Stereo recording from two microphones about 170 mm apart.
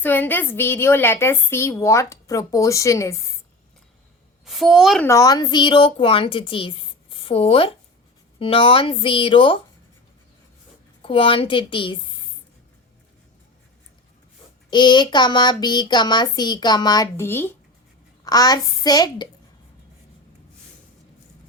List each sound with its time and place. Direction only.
0.0 s a woman's voice: 10° left (ahead or behind)
4.4 s a woman's voice: centre (ahead or behind)
5.0 s a woman's voice: 20° left (ahead or behind)
11.0 s a woman's voice: 30° left (ahead or behind)
14.7 s speech: 25° left (ahead or behind)